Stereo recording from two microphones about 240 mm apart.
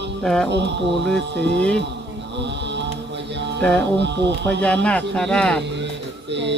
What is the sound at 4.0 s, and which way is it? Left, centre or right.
Speech, right.